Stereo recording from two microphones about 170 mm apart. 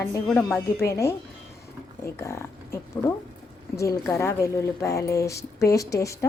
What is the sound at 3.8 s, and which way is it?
Speech, 15° left (ahead or behind).